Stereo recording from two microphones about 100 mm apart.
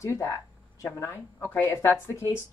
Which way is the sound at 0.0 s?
30° left (ahead or behind).